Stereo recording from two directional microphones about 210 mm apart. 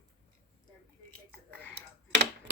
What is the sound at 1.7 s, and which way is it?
Tick-tock, 55° right (ahead or behind).